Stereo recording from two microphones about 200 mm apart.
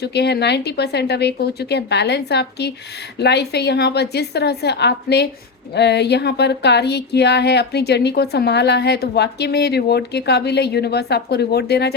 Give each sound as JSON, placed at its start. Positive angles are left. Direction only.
{"t": 0.0, "sound": "speech", "side_deg": 55}